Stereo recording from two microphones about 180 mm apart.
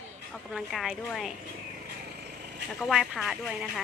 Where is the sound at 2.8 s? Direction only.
Centre (ahead or behind).